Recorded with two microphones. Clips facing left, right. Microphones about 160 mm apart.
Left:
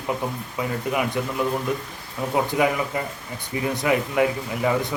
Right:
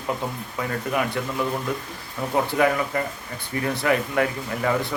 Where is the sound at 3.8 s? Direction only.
15° left (ahead or behind).